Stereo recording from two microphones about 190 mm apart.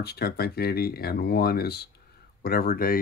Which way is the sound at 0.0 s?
55° left (ahead or behind).